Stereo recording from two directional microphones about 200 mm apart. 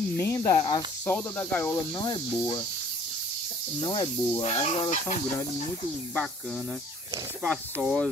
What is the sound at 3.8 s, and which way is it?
Speech, 25° left (ahead or behind).